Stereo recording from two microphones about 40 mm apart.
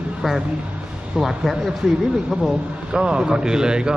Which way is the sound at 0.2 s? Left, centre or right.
Centre.